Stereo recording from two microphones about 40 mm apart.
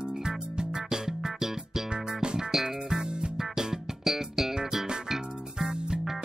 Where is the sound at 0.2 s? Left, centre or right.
Centre.